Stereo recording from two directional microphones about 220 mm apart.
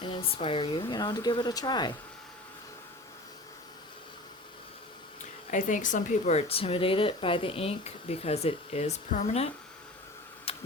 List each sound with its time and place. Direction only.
0.0 s speech: 25° left (ahead or behind)
5.5 s speech: 35° left (ahead or behind)
10.5 s tick-tock: 25° left (ahead or behind)